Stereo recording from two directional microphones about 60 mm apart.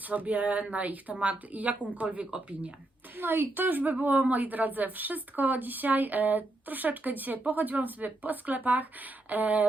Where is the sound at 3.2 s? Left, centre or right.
Right.